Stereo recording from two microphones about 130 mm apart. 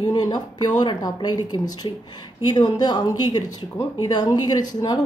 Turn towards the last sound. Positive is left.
turn(degrees=30)  # may be behind; listen again after turning